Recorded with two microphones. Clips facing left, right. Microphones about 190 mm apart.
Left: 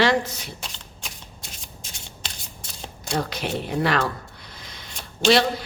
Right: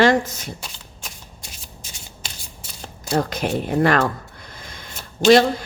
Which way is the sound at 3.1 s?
45° right (ahead or behind).